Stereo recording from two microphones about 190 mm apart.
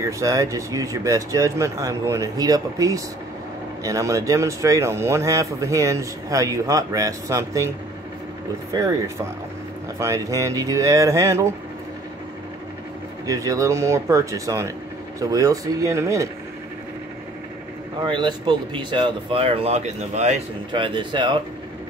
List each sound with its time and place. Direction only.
0.0 s speech: 15° right (ahead or behind)
8.7 s speech: 15° right (ahead or behind)
13.3 s speech: 15° right (ahead or behind)
18.0 s speech: 25° right (ahead or behind)